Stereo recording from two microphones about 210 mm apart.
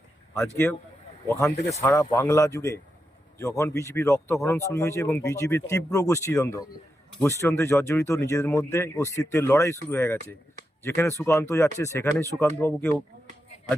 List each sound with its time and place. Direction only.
0.3 s speech: 10° left (ahead or behind)